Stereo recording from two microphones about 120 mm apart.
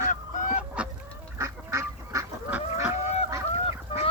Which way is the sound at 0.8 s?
10° right (ahead or behind).